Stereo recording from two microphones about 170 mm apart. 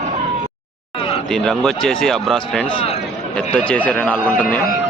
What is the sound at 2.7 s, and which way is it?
Speech, 35° left (ahead or behind).